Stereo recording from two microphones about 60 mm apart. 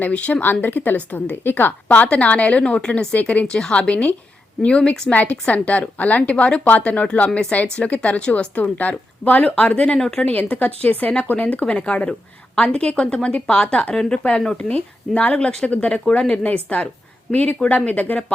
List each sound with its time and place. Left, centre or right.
0.0 s a woman's voice: left
1.9 s a woman's voice: left
10.0 s speech: centre
10.3 s a woman's voice: left